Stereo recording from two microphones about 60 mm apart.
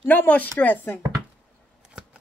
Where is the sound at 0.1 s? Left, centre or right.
Left.